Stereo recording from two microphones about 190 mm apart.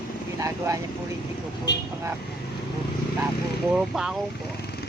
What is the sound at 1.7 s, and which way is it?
Speech, 65° left (ahead or behind).